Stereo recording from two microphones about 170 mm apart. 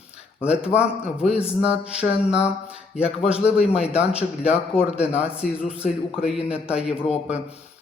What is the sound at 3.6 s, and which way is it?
Speech, 35° left (ahead or behind).